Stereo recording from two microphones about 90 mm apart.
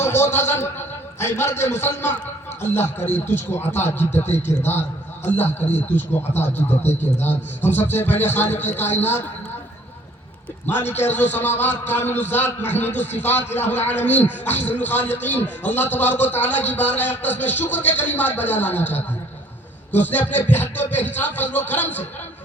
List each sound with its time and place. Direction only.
0.0 s a sound: 30° left (ahead or behind)
2.7 s a man's voice: 25° left (ahead or behind)
10.7 s a man's voice: 25° left (ahead or behind)